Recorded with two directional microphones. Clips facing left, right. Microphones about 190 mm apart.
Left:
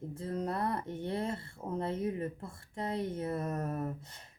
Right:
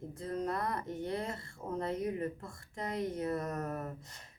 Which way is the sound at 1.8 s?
30° left (ahead or behind).